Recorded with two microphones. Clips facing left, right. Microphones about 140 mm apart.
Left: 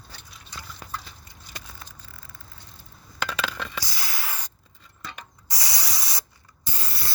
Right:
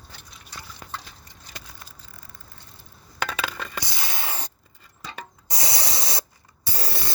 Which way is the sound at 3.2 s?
50° right (ahead or behind).